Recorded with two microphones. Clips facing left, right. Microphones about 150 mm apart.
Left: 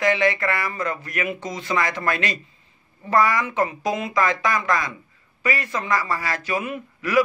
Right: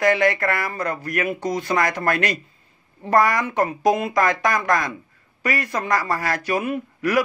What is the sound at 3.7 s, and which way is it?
A man's voice, 55° right (ahead or behind).